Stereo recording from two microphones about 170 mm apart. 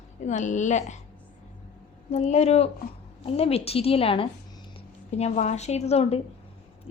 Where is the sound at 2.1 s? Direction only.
40° left (ahead or behind).